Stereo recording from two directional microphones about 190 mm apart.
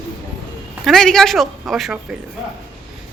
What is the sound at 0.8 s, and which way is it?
Speech, centre (ahead or behind).